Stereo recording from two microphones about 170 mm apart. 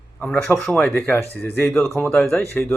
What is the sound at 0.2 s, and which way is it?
A man's voice, 5° left (ahead or behind).